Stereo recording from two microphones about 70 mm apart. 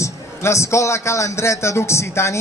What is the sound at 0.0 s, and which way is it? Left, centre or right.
A man's voice, left.